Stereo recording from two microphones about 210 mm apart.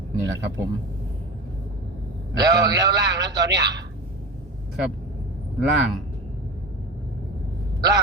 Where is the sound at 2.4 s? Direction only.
20° right (ahead or behind).